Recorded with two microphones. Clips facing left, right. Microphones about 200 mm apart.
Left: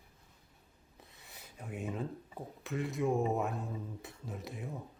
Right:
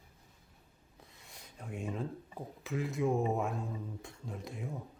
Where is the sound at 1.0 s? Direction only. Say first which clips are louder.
Even; centre (ahead or behind).